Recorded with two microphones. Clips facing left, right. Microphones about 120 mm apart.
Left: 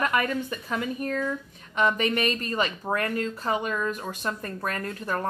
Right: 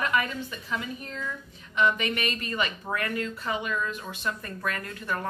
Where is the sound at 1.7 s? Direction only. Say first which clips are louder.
Left 2 dB; 40° left (ahead or behind).